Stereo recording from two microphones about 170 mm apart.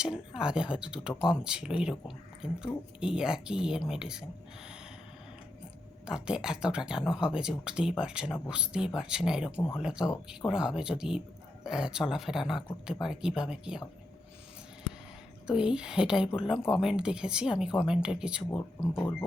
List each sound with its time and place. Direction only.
0.0 s speech: 5° right (ahead or behind)
6.1 s speech: 5° right (ahead or behind)
15.4 s speech: 5° right (ahead or behind)
18.5 s speech: 15° left (ahead or behind)